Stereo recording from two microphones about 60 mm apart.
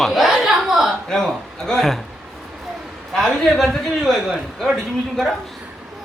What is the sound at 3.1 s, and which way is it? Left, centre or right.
A man's voice, centre.